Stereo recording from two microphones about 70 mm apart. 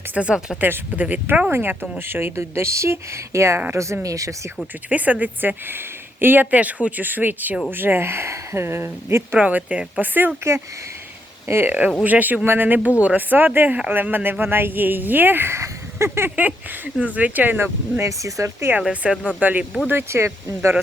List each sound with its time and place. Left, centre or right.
0.1 s speech: centre
0.6 s speech: right
4.9 s speech: right
9.4 s speech: right
11.4 s speech: right
12.0 s speech: right
17.2 s speech: right
18.0 s speech: right
18.8 s speech: centre
19.4 s speech: right
19.9 s speech: right